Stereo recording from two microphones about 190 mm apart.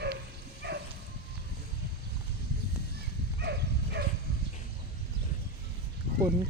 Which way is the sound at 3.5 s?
60° right (ahead or behind).